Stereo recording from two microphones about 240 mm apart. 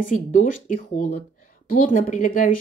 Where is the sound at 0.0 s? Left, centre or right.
Left.